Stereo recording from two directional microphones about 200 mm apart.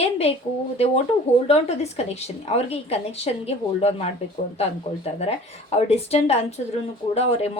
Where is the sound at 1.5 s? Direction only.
35° left (ahead or behind).